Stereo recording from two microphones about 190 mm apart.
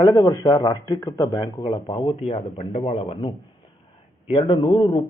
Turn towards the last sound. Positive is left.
turn(degrees=25)  # may be behind; listen again after turning